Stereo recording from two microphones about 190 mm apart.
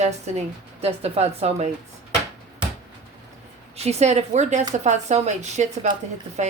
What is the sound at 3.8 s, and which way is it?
A woman's voice, 35° right (ahead or behind).